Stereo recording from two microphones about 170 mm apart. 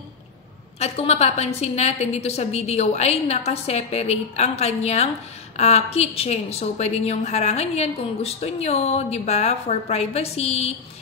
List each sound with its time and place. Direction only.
0.7 s a woman's voice: 35° left (ahead or behind)